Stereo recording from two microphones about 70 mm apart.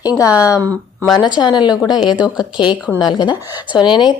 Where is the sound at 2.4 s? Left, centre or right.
Left.